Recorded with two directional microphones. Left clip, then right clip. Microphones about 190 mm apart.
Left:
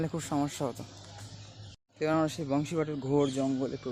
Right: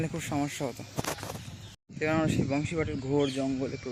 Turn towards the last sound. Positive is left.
turn(degrees=0)  # may be behind; listen again after turning